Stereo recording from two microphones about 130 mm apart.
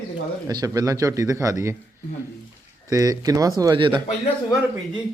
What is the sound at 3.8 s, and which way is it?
Speech, 40° right (ahead or behind).